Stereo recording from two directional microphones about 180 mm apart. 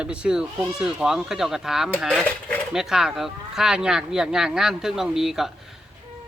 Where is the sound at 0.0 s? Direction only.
5° right (ahead or behind).